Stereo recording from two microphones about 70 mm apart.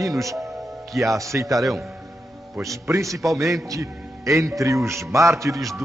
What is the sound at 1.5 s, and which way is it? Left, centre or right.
Speech, centre.